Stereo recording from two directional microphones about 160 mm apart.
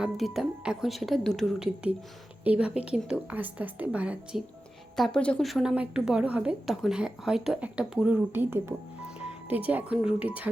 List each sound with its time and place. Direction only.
0.3 s a woman's voice: 5° right (ahead or behind)